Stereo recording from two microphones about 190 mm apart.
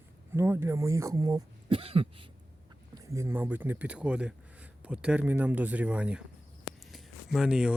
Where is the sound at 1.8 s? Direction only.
30° right (ahead or behind).